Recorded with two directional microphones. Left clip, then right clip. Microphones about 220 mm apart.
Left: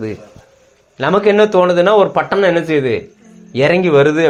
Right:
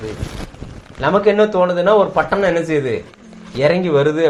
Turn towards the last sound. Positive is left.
turn(degrees=35)  # may be behind; listen again after turning